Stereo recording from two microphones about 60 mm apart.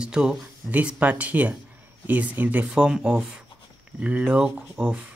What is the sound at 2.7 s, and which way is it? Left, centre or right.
Speech, centre.